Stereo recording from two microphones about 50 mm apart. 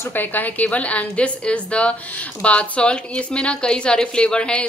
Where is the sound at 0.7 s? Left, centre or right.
Left.